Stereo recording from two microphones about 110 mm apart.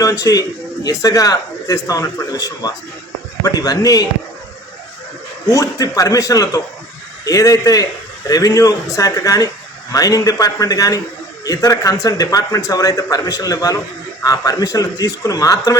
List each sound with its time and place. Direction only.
0.0 s a man's voice: 30° left (ahead or behind)
5.5 s speech: 35° left (ahead or behind)